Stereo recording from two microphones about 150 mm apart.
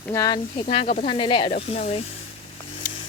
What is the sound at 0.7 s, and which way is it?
Speech, 35° left (ahead or behind).